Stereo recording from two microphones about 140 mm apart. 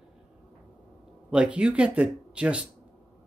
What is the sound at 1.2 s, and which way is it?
Speech, 10° right (ahead or behind).